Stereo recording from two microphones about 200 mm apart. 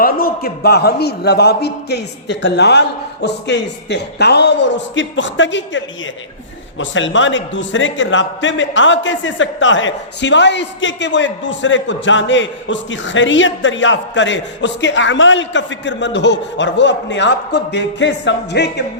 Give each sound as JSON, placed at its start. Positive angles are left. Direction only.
{"t": 0.0, "sound": "a man's voice", "side_deg": 45}